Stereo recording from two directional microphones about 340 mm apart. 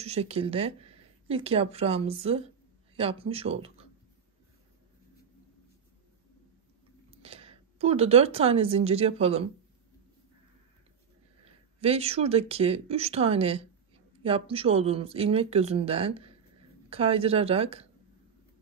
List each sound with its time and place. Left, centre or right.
0.0 s speech: centre
7.2 s speech: centre
11.4 s speech: centre